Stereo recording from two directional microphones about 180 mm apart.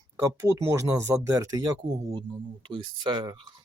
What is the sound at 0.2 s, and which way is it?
Speech, 15° right (ahead or behind).